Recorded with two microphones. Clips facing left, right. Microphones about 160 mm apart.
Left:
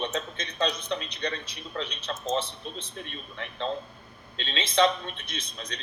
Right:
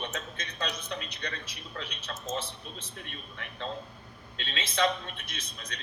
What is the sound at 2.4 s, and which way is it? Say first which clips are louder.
Speech: left 5 dB; 10° right (ahead or behind).